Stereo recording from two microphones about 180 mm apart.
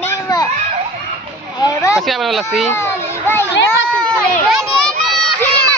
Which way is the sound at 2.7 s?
15° left (ahead or behind).